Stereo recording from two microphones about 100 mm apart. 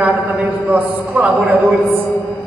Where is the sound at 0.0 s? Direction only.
20° right (ahead or behind).